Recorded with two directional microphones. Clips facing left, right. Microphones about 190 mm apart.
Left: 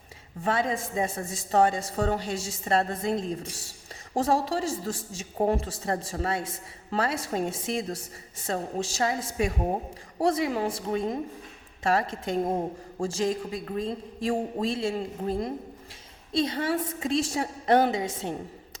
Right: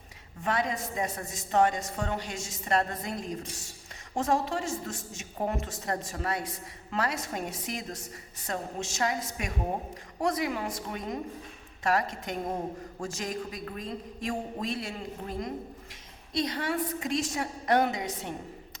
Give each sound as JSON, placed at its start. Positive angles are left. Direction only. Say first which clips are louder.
{"t": 0.4, "sound": "a woman's voice", "louder": "left 3 dB", "side_deg": 30}